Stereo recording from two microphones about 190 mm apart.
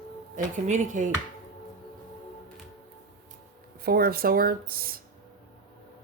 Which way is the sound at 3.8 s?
55° right (ahead or behind).